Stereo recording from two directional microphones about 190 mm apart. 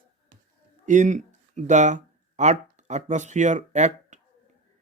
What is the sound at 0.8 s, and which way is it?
Speech, 40° right (ahead or behind).